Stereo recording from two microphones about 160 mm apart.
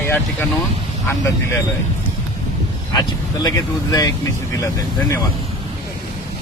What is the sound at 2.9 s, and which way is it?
Speech, 25° left (ahead or behind).